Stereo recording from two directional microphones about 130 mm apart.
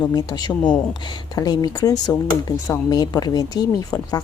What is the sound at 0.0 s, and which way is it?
A woman's voice, 30° left (ahead or behind).